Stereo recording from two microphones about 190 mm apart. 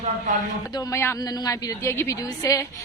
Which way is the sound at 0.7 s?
15° left (ahead or behind).